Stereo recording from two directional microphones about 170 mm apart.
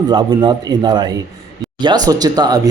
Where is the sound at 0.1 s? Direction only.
25° right (ahead or behind).